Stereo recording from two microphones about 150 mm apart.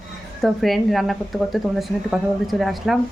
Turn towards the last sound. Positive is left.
turn(degrees=0)  # may be behind; listen again after turning